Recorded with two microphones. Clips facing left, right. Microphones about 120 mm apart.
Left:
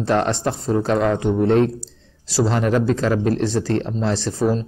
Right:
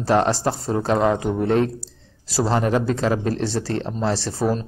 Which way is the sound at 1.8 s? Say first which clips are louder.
Left 2 dB; 40° right (ahead or behind).